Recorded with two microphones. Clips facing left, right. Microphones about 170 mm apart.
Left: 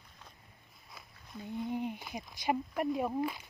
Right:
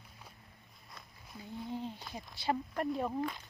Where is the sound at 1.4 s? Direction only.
15° left (ahead or behind).